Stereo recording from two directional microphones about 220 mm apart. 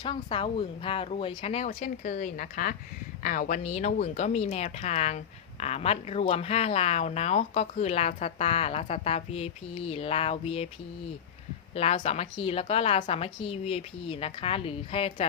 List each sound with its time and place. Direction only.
0.0 s speech: 20° left (ahead or behind)
11.7 s speech: 25° left (ahead or behind)